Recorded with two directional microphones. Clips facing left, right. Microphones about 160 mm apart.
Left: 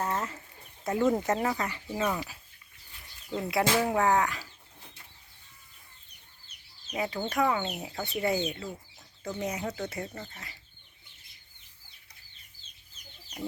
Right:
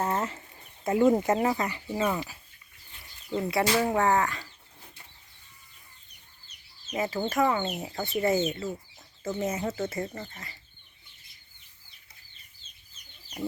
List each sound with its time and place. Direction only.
0.0 s a sound: 25° right (ahead or behind)
0.9 s speech: 20° right (ahead or behind); by 4.4 s centre (ahead or behind)
6.9 s speech: centre (ahead or behind)